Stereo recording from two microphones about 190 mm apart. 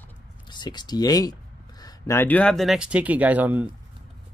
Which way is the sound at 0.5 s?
20° left (ahead or behind).